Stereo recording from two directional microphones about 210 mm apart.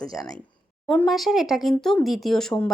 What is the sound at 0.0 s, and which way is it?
Speech, 15° left (ahead or behind).